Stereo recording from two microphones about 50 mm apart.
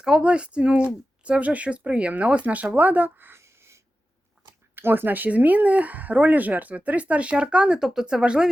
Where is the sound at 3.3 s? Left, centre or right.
Right.